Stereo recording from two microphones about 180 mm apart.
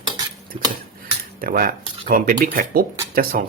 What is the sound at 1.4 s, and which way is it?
Speech, 55° right (ahead or behind).